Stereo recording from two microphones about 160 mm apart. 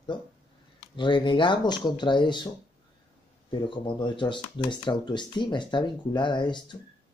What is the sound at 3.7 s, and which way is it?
Speech, 30° left (ahead or behind).